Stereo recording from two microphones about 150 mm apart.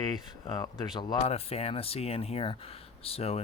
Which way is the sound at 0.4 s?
30° left (ahead or behind).